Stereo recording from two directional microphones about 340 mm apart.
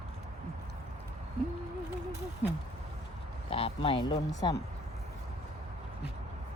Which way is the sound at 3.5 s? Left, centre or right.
Centre.